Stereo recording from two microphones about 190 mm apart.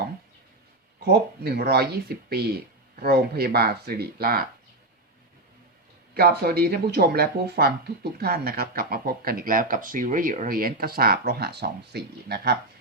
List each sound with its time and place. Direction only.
0.9 s speech: 55° right (ahead or behind)
6.1 s speech: 55° right (ahead or behind)